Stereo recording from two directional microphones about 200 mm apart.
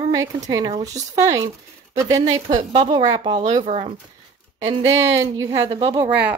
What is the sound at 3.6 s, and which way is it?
Speech, 30° right (ahead or behind).